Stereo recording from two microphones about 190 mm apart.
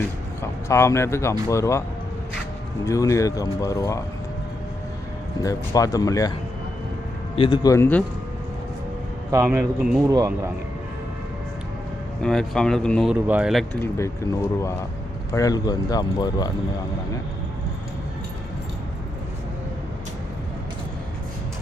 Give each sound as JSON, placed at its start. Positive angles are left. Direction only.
{"t": 0.4, "sound": "speech", "side_deg": 15}
{"t": 2.8, "sound": "speech", "side_deg": 15}
{"t": 5.4, "sound": "speech", "side_deg": 20}
{"t": 7.3, "sound": "speech", "side_deg": 25}
{"t": 9.3, "sound": "speech", "side_deg": -15}
{"t": 12.2, "sound": "speech", "side_deg": 5}
{"t": 13.1, "sound": "speech", "side_deg": -10}
{"t": 13.8, "sound": "speech", "side_deg": 15}